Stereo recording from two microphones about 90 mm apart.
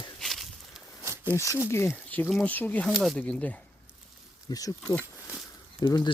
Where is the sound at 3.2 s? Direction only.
15° left (ahead or behind).